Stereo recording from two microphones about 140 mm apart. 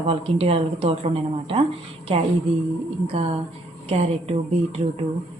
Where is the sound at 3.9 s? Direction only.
50° right (ahead or behind).